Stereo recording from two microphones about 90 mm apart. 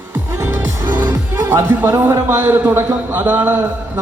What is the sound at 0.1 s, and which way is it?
Music, 30° right (ahead or behind).